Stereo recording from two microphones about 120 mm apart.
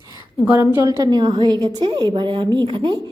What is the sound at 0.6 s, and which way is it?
A woman's voice, 25° right (ahead or behind).